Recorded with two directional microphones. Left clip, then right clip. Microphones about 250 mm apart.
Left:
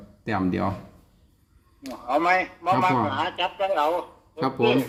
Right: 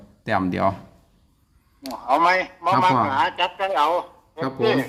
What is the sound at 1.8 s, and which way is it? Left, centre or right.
A man's voice, centre.